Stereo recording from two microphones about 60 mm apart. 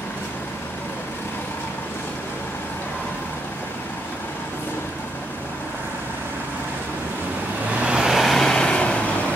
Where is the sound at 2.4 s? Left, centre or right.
Left.